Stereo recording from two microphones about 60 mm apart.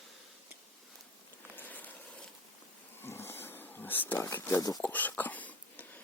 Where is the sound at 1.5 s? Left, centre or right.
Left.